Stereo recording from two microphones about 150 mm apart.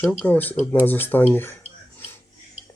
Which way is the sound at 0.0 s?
10° left (ahead or behind).